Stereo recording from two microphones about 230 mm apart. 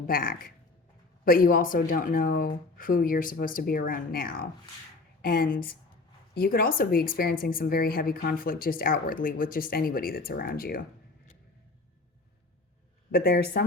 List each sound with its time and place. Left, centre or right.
0.1 s a woman's voice: left
13.1 s speech: left